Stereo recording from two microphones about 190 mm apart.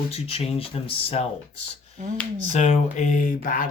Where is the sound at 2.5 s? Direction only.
35° left (ahead or behind).